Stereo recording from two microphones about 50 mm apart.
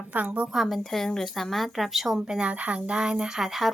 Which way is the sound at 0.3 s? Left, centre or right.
Centre.